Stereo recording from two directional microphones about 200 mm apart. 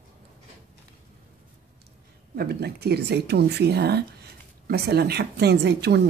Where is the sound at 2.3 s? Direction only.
50° right (ahead or behind).